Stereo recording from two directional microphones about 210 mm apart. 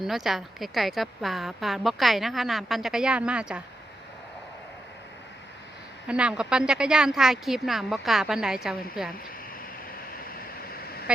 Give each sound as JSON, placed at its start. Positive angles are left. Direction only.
{"t": 0.0, "sound": "a woman's voice", "side_deg": 0}
{"t": 6.1, "sound": "a woman's voice", "side_deg": -5}
{"t": 10.3, "sound": "vehicle", "side_deg": 45}